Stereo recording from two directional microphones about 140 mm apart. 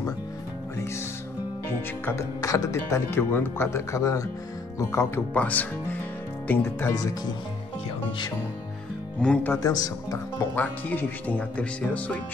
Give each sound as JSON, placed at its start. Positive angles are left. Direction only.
{"t": 2.0, "sound": "speech", "side_deg": 20}
{"t": 9.2, "sound": "speech", "side_deg": 10}
{"t": 9.5, "sound": "speech", "side_deg": 25}
{"t": 10.4, "sound": "speech", "side_deg": 15}